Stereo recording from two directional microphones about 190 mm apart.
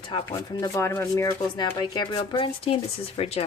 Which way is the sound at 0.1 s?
20° left (ahead or behind).